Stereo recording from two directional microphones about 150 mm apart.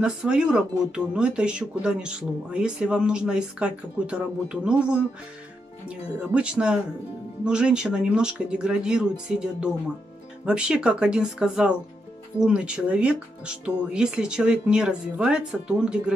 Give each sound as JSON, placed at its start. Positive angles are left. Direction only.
{"t": 0.0, "sound": "speech", "side_deg": -5}